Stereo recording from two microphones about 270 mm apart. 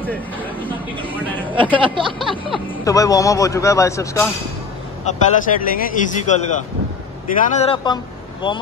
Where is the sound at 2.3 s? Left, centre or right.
Centre.